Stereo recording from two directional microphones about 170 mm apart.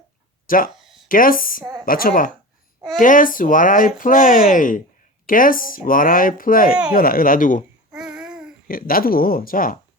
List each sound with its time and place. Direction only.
0.4 s speech: 55° left (ahead or behind)
7.9 s babbling: 5° right (ahead or behind)
8.6 s speech: 60° left (ahead or behind)